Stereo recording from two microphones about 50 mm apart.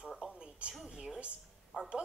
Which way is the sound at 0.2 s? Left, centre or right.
Centre.